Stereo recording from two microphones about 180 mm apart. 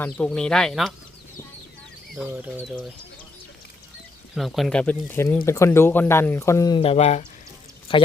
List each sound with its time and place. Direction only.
0.0 s speech: 5° left (ahead or behind)
2.2 s speech: 10° right (ahead or behind)
2.6 s speech: 5° left (ahead or behind)
4.4 s a man's voice: centre (ahead or behind); by 8.0 s 30° left (ahead or behind)